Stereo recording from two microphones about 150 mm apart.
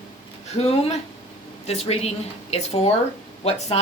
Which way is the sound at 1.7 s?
45° left (ahead or behind).